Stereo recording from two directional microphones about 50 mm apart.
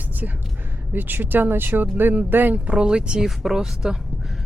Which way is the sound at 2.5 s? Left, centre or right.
Right.